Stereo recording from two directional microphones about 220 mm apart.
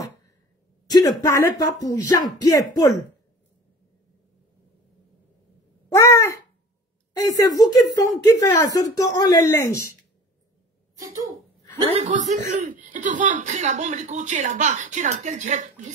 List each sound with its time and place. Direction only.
0.8 s speech: 15° left (ahead or behind)
5.9 s a sound: 10° left (ahead or behind)
7.2 s speech: 15° left (ahead or behind)
12.0 s speech: 30° right (ahead or behind)